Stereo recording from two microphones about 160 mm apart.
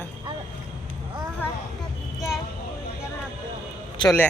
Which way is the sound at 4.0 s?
30° left (ahead or behind).